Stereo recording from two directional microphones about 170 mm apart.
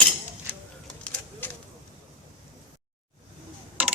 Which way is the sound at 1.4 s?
10° left (ahead or behind).